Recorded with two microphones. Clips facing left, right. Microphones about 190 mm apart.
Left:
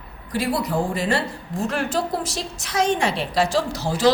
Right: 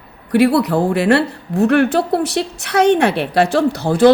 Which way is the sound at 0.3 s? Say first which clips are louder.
Right 10 dB; 65° right (ahead or behind).